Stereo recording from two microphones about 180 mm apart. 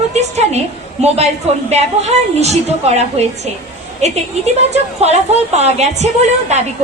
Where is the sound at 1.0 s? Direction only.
35° right (ahead or behind).